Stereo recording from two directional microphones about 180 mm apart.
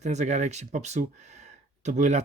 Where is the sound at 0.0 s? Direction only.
40° right (ahead or behind).